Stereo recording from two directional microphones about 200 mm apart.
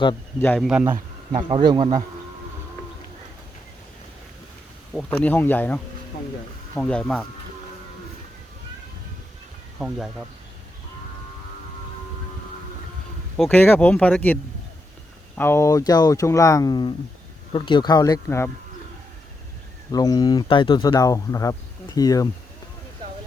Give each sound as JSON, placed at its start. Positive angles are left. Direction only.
{"t": 0.3, "sound": "speech", "side_deg": 10}
{"t": 0.7, "sound": "a man's voice", "side_deg": -10}
{"t": 1.4, "sound": "speech", "side_deg": -25}
{"t": 4.9, "sound": "speech", "side_deg": 10}
{"t": 9.7, "sound": "speech", "side_deg": -5}
{"t": 13.3, "sound": "speech", "side_deg": 5}
{"t": 15.4, "sound": "speech", "side_deg": 10}
{"t": 19.9, "sound": "speech", "side_deg": 20}